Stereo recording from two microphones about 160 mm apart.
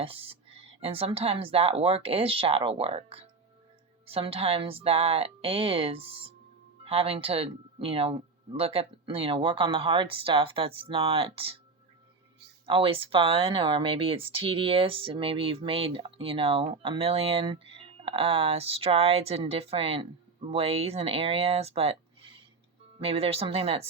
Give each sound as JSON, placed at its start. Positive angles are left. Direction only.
{"t": 0.0, "sound": "speech", "side_deg": -35}
{"t": 12.6, "sound": "speech", "side_deg": -35}